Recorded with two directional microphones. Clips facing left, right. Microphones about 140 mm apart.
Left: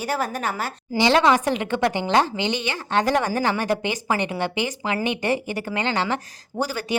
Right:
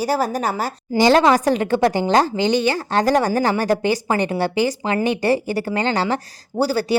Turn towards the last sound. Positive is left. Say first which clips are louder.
# right 7 dB
turn(degrees=-35)  # may be behind; listen again after turning